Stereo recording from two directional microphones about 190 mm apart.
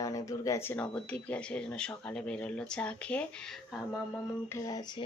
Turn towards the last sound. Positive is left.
turn(degrees=20)  # may be behind; listen again after turning